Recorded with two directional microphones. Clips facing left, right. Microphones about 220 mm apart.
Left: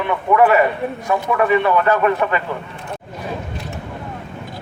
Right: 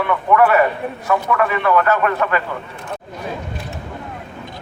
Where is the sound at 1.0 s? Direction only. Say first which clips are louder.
Left 1 dB; 20° left (ahead or behind).